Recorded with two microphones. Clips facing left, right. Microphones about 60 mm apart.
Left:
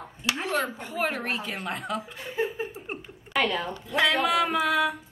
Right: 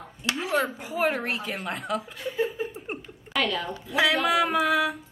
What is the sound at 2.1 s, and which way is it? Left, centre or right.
Speech, left.